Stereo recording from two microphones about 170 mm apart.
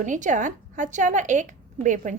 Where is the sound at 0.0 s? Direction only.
50° right (ahead or behind).